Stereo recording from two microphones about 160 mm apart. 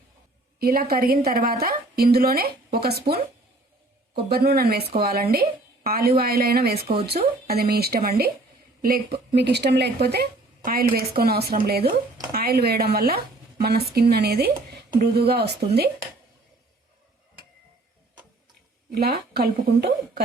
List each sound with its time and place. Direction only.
0.6 s a woman's voice: 70° right (ahead or behind)
4.3 s a woman's voice: 75° right (ahead or behind)
18.9 s a woman's voice: 75° right (ahead or behind)